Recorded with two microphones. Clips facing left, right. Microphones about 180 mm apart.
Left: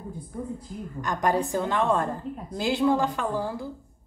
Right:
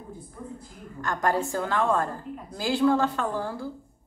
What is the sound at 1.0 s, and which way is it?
A woman's voice, 15° left (ahead or behind).